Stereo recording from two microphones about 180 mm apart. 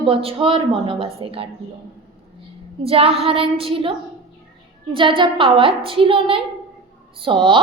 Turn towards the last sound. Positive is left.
turn(degrees=-25)  # may be behind; listen again after turning